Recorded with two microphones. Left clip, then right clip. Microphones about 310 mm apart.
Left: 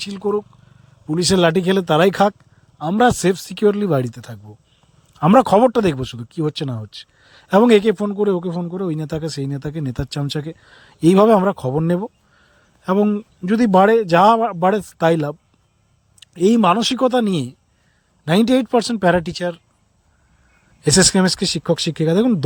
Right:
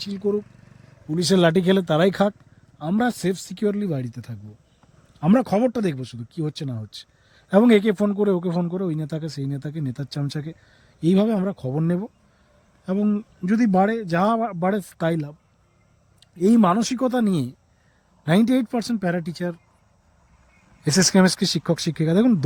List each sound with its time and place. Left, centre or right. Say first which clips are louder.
0.0 s speech: left 4 dB; centre
20.8 s speech: left 4 dB; centre